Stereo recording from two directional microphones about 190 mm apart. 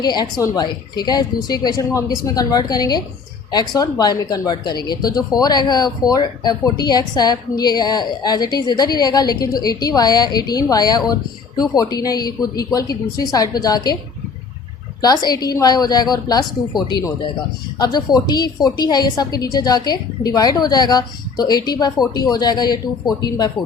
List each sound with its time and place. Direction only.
0.0 s speech: 20° left (ahead or behind)
15.0 s speech: 20° left (ahead or behind)
17.7 s speech: 20° left (ahead or behind)